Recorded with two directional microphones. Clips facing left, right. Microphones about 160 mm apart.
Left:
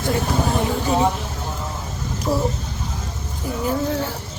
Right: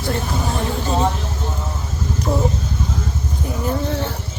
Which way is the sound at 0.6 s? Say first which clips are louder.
Right 2 dB; 15° left (ahead or behind).